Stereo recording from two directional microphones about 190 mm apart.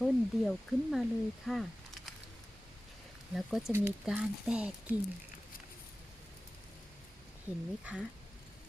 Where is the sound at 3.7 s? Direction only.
15° right (ahead or behind).